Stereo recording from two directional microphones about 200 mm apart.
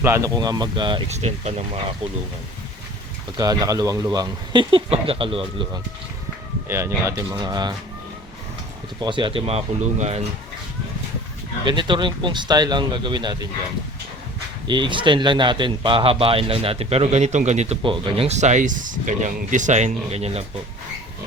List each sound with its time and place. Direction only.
0.0 s speech: 15° right (ahead or behind); by 1.6 s 35° right (ahead or behind)
3.3 s speech: 20° right (ahead or behind)
6.7 s speech: 10° right (ahead or behind)
9.0 s speech: 25° right (ahead or behind)
11.6 s speech: 25° right (ahead or behind)
14.7 s speech: 25° right (ahead or behind)